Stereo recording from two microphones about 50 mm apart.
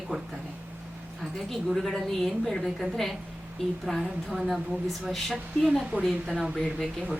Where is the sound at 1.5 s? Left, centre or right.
Centre.